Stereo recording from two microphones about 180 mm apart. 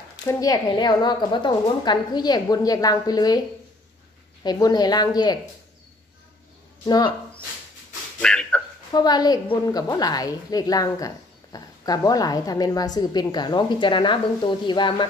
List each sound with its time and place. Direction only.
0.3 s a woman's voice: 20° left (ahead or behind)
8.2 s a sound: 5° left (ahead or behind)
8.9 s a woman's voice: 20° left (ahead or behind)